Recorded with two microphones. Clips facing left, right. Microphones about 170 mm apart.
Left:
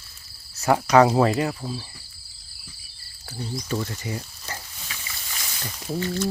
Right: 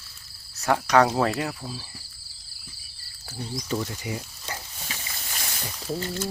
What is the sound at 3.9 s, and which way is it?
Speech, 10° right (ahead or behind).